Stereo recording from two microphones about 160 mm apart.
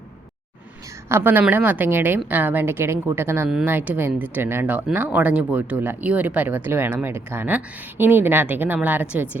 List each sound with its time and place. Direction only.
1.0 s a woman's voice: 15° right (ahead or behind)